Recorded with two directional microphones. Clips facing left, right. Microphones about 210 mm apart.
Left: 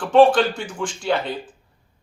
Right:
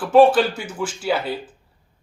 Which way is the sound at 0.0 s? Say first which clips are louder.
Right 1 dB; 5° right (ahead or behind).